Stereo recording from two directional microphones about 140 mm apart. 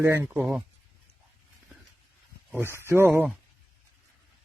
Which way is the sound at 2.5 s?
15° right (ahead or behind).